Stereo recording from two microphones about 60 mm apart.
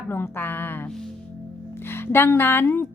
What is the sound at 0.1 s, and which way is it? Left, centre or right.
A woman's voice, left.